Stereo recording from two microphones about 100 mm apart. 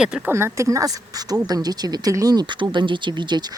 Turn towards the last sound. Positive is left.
turn(degrees=-50)  # may be behind; listen again after turning